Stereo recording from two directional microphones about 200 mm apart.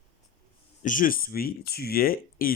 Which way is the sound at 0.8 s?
40° left (ahead or behind).